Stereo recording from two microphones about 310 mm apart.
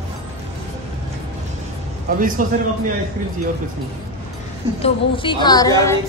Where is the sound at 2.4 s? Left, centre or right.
Right.